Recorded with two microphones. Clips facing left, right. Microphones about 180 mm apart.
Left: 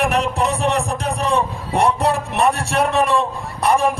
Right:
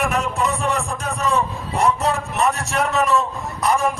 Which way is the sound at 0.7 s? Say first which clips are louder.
Left 4 dB; 30° left (ahead or behind).